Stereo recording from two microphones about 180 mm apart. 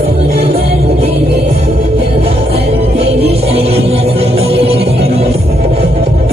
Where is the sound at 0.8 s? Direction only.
35° right (ahead or behind).